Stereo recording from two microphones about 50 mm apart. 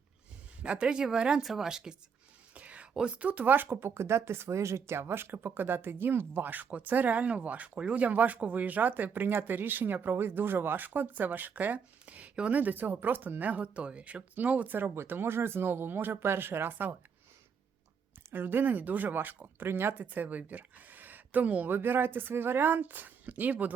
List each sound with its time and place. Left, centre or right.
0.6 s speech: right
2.6 s whispering: right
3.2 s speech: right
14.8 s speech: right
18.3 s speech: right
19.6 s speech: right
20.0 s speech: right
21.8 s speech: right